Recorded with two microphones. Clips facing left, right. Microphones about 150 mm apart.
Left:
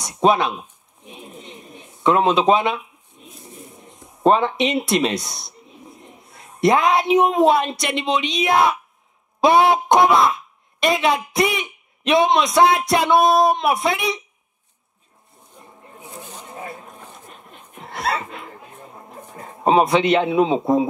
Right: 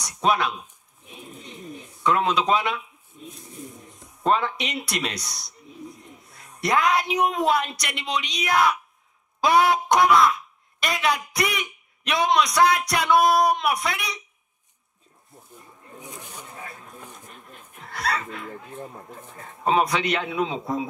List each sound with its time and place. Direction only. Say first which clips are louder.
0.0 s a sound: left 6 dB; 25° left (ahead or behind)
2.0 s a man's voice: left 6 dB; 25° left (ahead or behind)
3.1 s pigeon: right 5 dB; 20° left (ahead or behind)
4.2 s a man's voice: left 7 dB; 20° left (ahead or behind)
16.4 s a sound: left 6 dB; 20° left (ahead or behind)
19.3 s a man's voice: left 5 dB; 25° left (ahead or behind)